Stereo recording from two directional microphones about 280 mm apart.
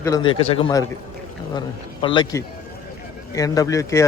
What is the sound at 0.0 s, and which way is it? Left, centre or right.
Speech, centre.